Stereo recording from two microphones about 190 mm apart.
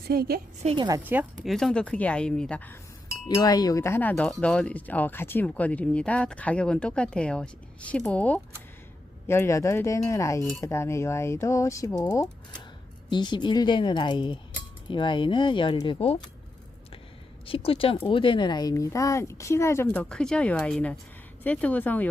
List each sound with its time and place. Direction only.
0.1 s a woman's voice: 55° right (ahead or behind)
0.6 s a woman's voice: 30° right (ahead or behind)
0.9 s speech: 15° right (ahead or behind)
1.5 s speech: centre (ahead or behind)
3.2 s speech: 20° left (ahead or behind)
17.4 s speech: 30° left (ahead or behind); by 22.1 s 10° left (ahead or behind)